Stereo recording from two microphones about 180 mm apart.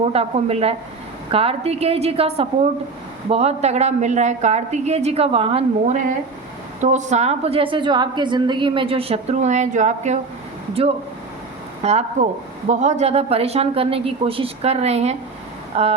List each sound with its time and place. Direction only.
0.1 s a woman's voice: 35° right (ahead or behind)
11.8 s a woman's voice: 35° right (ahead or behind)